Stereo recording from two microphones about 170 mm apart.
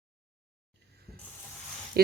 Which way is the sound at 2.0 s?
70° right (ahead or behind).